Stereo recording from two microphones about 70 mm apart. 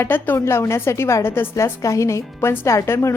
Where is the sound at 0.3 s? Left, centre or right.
Left.